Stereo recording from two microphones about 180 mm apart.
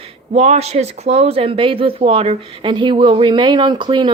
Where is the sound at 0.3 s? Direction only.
35° right (ahead or behind).